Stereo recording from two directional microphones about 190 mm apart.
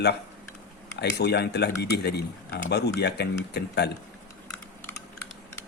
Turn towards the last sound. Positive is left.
turn(degrees=60)  # may be behind; listen again after turning